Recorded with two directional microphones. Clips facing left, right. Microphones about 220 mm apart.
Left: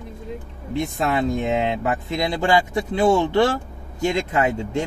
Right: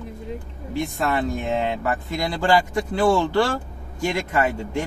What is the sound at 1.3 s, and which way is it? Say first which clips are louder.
Speech: left 2 dB; 20° left (ahead or behind).